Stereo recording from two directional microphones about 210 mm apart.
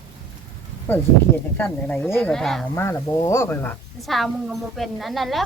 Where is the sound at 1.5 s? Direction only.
10° left (ahead or behind).